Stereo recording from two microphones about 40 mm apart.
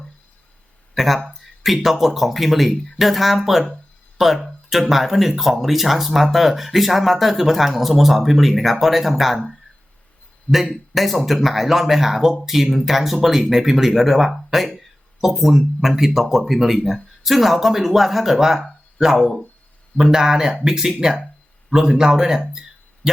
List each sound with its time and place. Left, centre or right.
0.9 s speech: centre
10.5 s a man's voice: left
10.9 s a man's voice: centre